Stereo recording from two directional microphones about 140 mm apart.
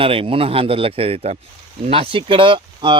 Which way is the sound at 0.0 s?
40° right (ahead or behind).